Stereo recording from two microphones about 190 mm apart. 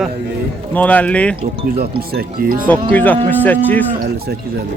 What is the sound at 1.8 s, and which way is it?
Speech, 55° right (ahead or behind).